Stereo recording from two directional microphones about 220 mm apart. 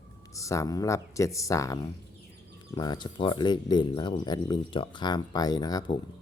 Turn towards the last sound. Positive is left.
turn(degrees=20)  # may be behind; listen again after turning